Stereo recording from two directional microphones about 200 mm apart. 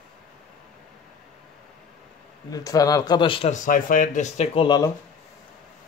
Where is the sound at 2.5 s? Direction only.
15° left (ahead or behind).